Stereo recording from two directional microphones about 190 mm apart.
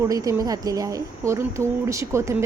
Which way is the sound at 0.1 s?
20° right (ahead or behind).